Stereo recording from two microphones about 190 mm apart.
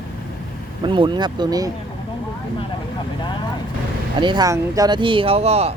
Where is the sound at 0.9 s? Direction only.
25° right (ahead or behind).